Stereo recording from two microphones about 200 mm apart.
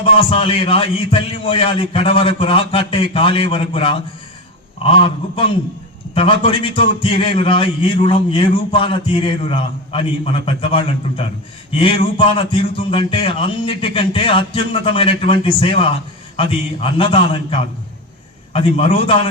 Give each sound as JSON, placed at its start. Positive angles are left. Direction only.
{"t": 0.0, "sound": "a man's voice", "side_deg": 25}